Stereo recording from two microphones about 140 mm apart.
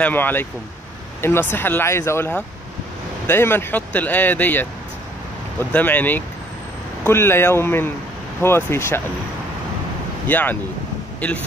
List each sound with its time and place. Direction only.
0.0 s speech: 15° left (ahead or behind)
10.2 s speech: 10° left (ahead or behind)